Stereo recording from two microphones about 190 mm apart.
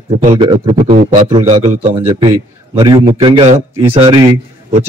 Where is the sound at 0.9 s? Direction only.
40° right (ahead or behind).